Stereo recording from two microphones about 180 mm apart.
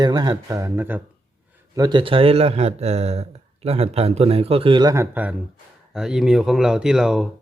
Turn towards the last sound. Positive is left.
turn(degrees=-5)  # may be behind; listen again after turning